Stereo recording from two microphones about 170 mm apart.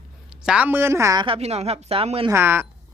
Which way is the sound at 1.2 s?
35° right (ahead or behind).